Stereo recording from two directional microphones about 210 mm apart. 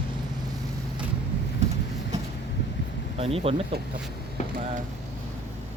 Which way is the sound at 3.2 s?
30° right (ahead or behind).